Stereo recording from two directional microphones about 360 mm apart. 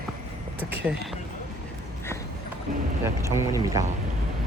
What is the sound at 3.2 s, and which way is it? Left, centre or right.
Speech, centre.